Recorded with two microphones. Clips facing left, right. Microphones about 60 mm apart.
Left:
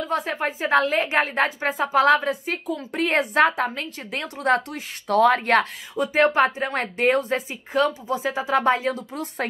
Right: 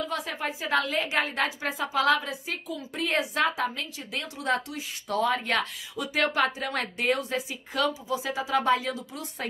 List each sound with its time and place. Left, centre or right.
0.1 s a woman's voice: left